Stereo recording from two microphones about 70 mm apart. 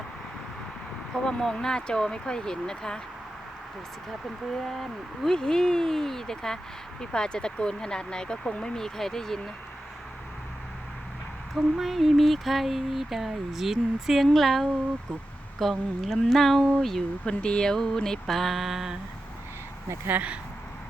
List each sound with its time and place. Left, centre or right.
1.1 s speech: centre
4.5 s speech: centre
11.5 s a sound: centre
20.1 s speech: right